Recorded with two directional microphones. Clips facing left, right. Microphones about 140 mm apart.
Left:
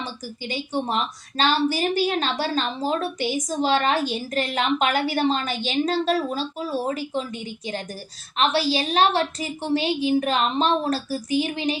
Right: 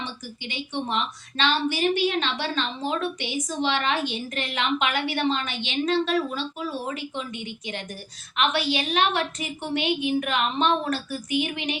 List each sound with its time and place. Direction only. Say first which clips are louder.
0.0 s a woman's voice: left 3 dB; 40° left (ahead or behind)